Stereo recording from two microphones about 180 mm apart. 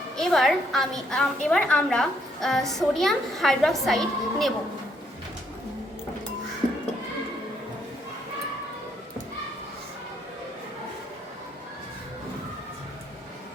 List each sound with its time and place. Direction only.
0.2 s a woman's voice: centre (ahead or behind)